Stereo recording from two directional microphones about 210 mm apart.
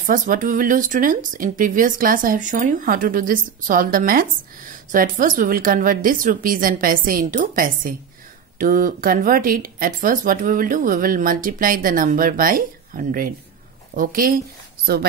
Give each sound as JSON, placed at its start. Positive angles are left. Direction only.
{"t": 0.0, "sound": "speech", "side_deg": -40}